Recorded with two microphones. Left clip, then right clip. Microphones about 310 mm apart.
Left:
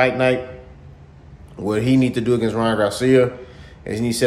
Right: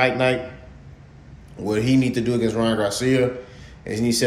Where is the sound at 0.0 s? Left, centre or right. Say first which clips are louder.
Left 2 dB; centre.